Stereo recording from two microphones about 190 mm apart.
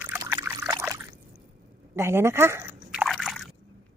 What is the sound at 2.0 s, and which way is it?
Drip, 15° right (ahead or behind).